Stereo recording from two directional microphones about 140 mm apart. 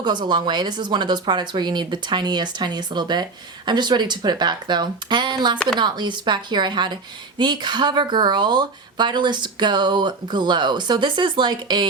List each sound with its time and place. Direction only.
0.0 s a woman's voice: 30° right (ahead or behind)